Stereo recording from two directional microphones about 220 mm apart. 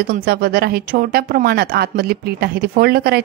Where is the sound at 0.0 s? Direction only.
40° right (ahead or behind).